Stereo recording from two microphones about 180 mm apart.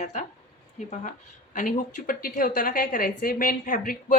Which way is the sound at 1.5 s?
45° left (ahead or behind).